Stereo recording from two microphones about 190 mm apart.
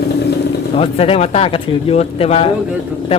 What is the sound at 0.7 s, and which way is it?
Speech, 30° left (ahead or behind).